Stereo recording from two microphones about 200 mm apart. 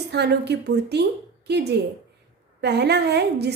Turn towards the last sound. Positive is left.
turn(degrees=-55)  # may be behind; listen again after turning